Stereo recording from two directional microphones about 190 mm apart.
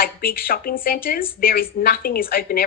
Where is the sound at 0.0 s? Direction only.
50° left (ahead or behind).